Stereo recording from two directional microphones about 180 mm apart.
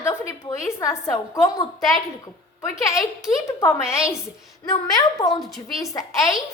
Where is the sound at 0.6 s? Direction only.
15° left (ahead or behind).